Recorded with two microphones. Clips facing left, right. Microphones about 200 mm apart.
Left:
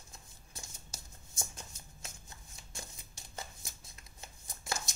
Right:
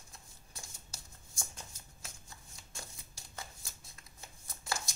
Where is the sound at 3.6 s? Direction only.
20° left (ahead or behind).